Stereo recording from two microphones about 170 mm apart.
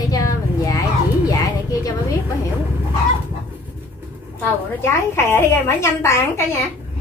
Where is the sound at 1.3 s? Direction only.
20° left (ahead or behind).